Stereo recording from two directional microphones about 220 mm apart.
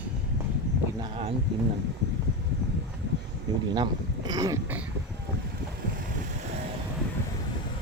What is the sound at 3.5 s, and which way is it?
Speech, 20° right (ahead or behind).